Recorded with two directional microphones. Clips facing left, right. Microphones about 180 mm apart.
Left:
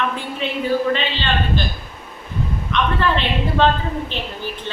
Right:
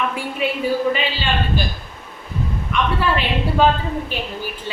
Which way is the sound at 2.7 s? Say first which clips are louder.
Even; 10° right (ahead or behind).